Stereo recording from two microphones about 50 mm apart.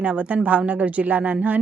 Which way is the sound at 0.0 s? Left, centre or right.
Right.